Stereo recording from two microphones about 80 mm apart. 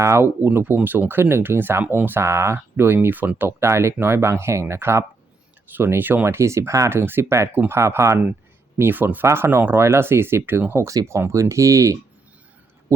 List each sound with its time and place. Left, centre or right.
0.0 s speech: right
8.8 s speech: right
10.8 s speech: right